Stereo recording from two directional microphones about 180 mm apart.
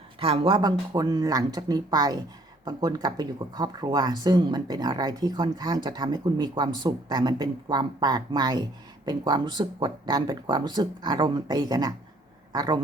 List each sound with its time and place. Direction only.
0.2 s speech: 30° right (ahead or behind)